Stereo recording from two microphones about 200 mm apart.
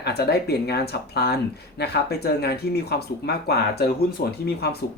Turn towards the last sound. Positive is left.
turn(degrees=50)  # may be behind; listen again after turning